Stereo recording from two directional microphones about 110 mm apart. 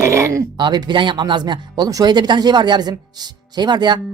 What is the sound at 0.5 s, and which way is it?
Speech, 45° right (ahead or behind).